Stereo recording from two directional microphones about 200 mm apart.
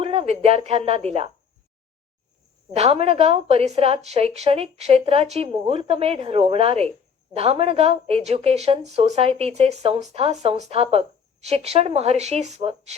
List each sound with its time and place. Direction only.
0.0 s speech: 30° right (ahead or behind)
2.7 s speech: 30° right (ahead or behind)